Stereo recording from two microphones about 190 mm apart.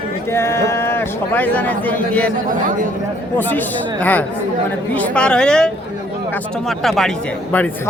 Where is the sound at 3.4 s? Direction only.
10° left (ahead or behind).